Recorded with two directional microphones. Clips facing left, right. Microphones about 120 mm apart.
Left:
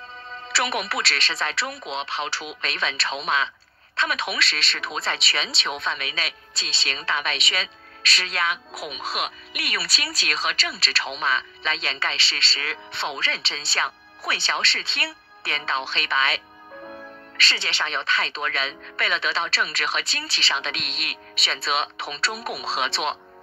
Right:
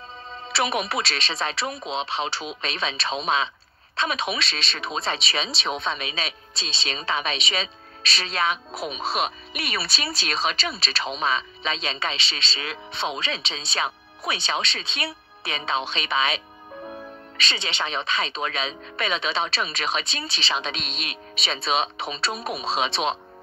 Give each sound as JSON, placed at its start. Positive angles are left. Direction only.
{"t": 0.3, "sound": "speech", "side_deg": -20}